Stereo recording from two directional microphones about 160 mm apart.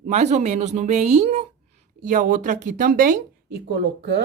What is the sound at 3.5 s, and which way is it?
Speech, 90° right.